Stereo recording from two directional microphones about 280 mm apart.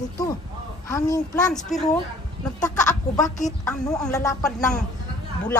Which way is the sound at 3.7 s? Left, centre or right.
Centre.